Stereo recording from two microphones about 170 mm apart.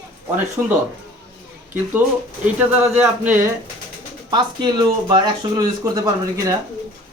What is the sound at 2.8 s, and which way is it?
Speech, 10° right (ahead or behind).